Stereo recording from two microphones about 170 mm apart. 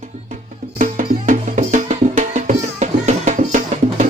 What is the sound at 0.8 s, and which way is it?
Music, 50° right (ahead or behind).